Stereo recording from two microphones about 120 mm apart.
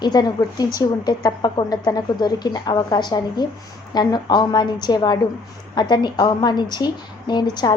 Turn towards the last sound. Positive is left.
turn(degrees=35)  # may be behind; listen again after turning